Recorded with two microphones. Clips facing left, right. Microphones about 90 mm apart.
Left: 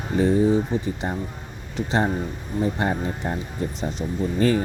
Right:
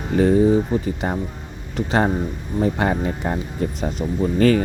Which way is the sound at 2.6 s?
90° right.